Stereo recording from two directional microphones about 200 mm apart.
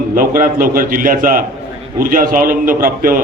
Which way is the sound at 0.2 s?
45° right (ahead or behind).